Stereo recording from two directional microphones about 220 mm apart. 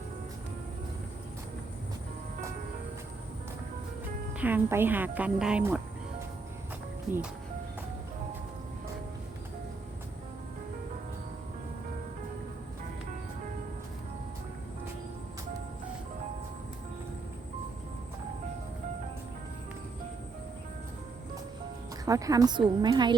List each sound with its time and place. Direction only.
4.4 s speech: 10° right (ahead or behind)
22.0 s a woman's voice: 15° right (ahead or behind)